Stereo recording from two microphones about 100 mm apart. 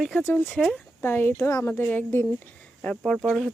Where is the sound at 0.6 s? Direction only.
5° left (ahead or behind).